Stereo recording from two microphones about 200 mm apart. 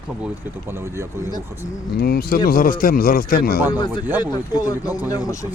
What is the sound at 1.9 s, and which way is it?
Speech, 50° left (ahead or behind).